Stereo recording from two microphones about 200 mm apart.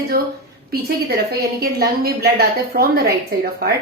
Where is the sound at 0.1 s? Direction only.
50° right (ahead or behind).